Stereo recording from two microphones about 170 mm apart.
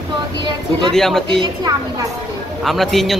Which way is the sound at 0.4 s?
30° right (ahead or behind).